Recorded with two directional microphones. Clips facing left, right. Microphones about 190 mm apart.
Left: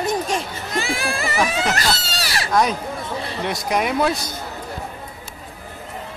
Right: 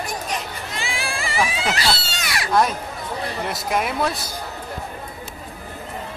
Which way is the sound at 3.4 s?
Centre (ahead or behind).